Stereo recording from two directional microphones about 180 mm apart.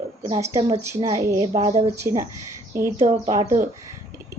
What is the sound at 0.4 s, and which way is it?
Speech, 15° right (ahead or behind).